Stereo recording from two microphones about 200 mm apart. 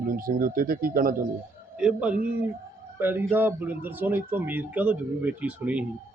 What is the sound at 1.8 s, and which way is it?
A man's voice, 5° right (ahead or behind).